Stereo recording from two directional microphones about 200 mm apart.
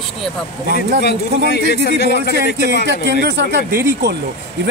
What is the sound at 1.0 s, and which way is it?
A man's voice, 55° left (ahead or behind).